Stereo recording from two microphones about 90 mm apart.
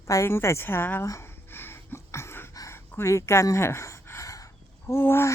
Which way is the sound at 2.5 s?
40° left (ahead or behind).